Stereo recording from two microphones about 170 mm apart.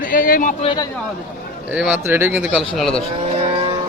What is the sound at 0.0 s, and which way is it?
Speech, 55° left (ahead or behind).